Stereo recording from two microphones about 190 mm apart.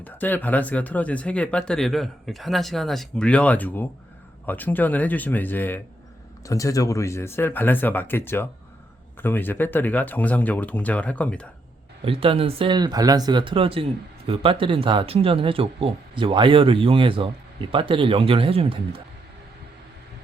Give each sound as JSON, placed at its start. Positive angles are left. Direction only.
{"t": 0.0, "sound": "speech", "side_deg": 10}
{"t": 12.0, "sound": "speech", "side_deg": -30}